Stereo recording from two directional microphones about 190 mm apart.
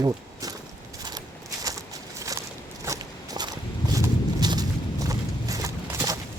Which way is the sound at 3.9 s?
20° right (ahead or behind).